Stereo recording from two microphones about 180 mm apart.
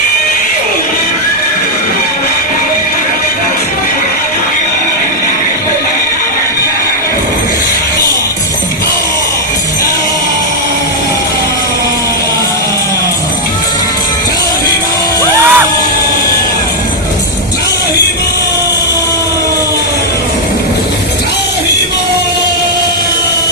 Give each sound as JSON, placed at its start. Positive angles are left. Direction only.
{"t": 15.2, "sound": "music", "side_deg": -15}